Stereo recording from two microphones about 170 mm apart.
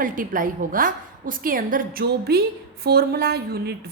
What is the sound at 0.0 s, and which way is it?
A woman's voice, 50° right (ahead or behind).